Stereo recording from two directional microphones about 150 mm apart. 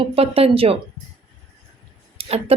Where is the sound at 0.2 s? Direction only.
40° right (ahead or behind).